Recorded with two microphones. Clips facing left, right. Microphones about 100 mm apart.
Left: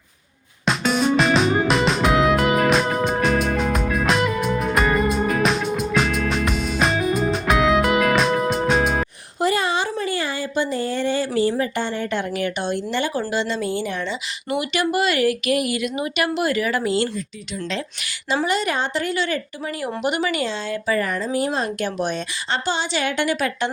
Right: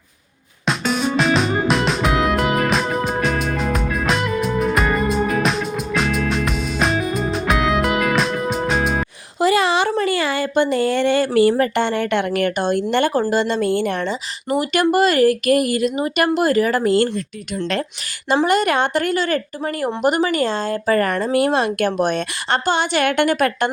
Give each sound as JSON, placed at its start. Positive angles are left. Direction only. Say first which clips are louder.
{"t": 0.6, "sound": "music", "louder": "even", "side_deg": 0}
{"t": 9.4, "sound": "a sound", "louder": "right 4 dB", "side_deg": -90}
{"t": 10.5, "sound": "speech", "louder": "right 6 dB", "side_deg": -60}
{"t": 18.4, "sound": "speech", "louder": "right 6 dB", "side_deg": -55}
{"t": 21.3, "sound": "a woman's voice", "louder": "right 6 dB", "side_deg": -70}